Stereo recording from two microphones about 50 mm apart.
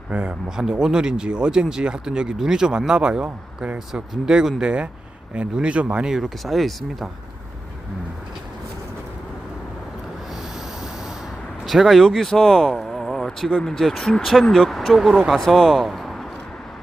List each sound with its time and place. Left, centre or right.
0.1 s speech: right
0.4 s speech: centre
6.1 s speech: centre
11.6 s speech: centre
12.4 s a sound: centre
13.5 s speech: centre
15.1 s speech: centre
15.5 s speech: centre